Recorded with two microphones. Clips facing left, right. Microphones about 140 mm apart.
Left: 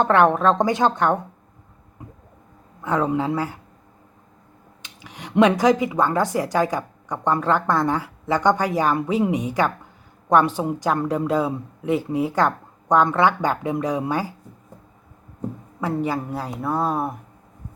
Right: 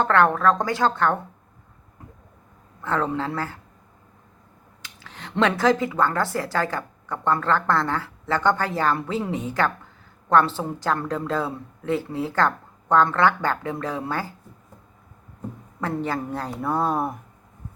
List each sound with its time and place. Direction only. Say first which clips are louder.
0.0 s a woman's voice: left 2 dB; 20° left (ahead or behind)
2.0 s a sound: left 4 dB; 15° left (ahead or behind)
2.8 s speech: left 3 dB; 15° left (ahead or behind)
4.8 s speech: left 3 dB; 15° left (ahead or behind)
15.8 s speech: left 2 dB; 10° left (ahead or behind)